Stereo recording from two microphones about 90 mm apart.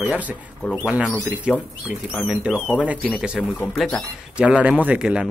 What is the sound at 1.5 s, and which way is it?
Speech, 10° right (ahead or behind).